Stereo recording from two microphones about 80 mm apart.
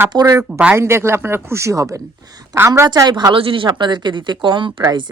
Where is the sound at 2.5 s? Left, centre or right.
Right.